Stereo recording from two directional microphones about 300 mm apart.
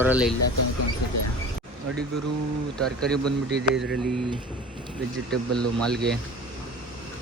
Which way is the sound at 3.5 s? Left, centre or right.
Right.